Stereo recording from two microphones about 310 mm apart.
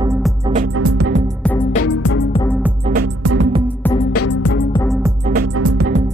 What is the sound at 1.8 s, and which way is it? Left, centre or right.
Music, left.